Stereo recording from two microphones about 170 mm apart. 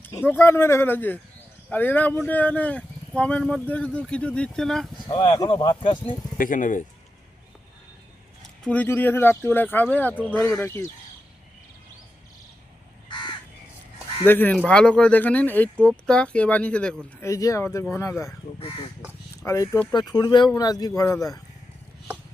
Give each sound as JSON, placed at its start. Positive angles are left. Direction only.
{"t": 0.3, "sound": "speech", "side_deg": 15}
{"t": 5.0, "sound": "speech", "side_deg": 25}
{"t": 6.3, "sound": "speech", "side_deg": 50}
{"t": 8.6, "sound": "speech", "side_deg": 10}
{"t": 13.1, "sound": "crow", "side_deg": 25}
{"t": 14.3, "sound": "speech", "side_deg": 10}
{"t": 18.5, "sound": "speech", "side_deg": 40}
{"t": 19.4, "sound": "speech", "side_deg": 20}